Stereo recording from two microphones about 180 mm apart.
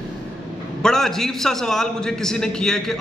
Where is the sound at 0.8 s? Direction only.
Centre (ahead or behind).